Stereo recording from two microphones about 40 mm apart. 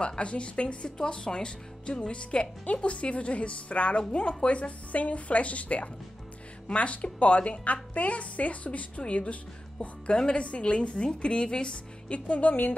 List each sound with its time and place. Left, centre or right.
0.0 s a woman's voice: left